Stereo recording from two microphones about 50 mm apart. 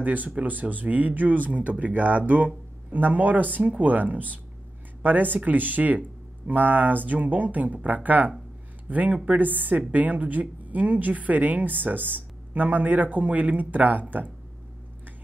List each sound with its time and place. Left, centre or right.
0.0 s a woman's voice: right